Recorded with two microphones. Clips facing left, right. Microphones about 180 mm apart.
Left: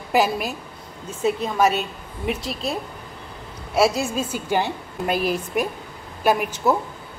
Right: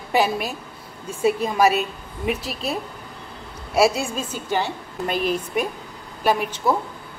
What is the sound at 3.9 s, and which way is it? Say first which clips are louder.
A woman's voice: left 2 dB; 5° left (ahead or behind).